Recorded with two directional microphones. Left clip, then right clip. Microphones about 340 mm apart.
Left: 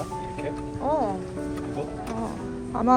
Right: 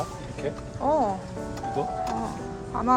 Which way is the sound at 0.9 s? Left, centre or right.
Centre.